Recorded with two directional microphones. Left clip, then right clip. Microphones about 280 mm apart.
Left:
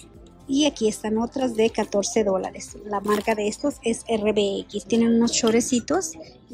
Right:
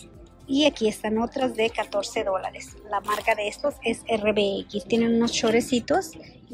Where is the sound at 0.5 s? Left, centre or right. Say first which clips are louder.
Even; centre.